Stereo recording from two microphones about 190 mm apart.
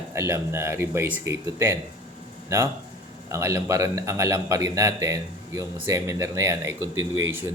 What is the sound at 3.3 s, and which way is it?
Speech, 15° right (ahead or behind).